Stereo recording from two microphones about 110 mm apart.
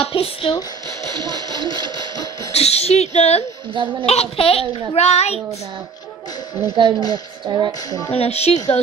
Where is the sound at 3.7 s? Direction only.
50° right (ahead or behind).